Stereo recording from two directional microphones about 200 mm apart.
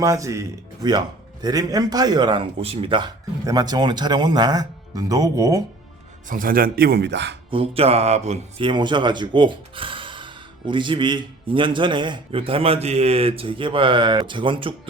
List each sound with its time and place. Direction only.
0.0 s speech: 15° right (ahead or behind)
6.2 s speech: 45° right (ahead or behind); by 7.3 s 60° right (ahead or behind)
7.5 s speech: 30° right (ahead or behind)